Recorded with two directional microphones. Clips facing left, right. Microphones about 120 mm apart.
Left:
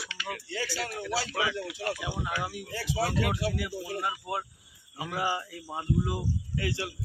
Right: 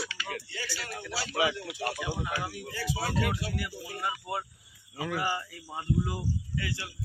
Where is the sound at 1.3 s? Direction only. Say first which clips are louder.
Right 2 dB; 25° right (ahead or behind).